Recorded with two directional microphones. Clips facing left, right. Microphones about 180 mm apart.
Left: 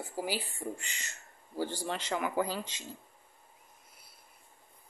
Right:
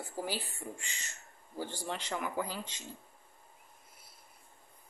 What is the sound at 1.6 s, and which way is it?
A man's voice, 90° left.